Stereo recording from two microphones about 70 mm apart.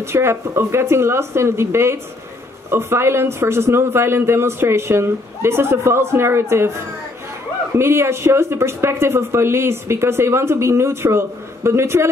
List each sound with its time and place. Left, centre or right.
0.0 s speech: right